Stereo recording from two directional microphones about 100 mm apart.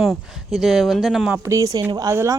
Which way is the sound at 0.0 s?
Centre (ahead or behind).